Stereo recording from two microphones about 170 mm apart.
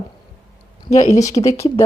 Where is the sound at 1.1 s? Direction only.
20° left (ahead or behind).